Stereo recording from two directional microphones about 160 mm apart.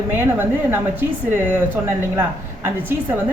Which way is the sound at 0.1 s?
15° right (ahead or behind).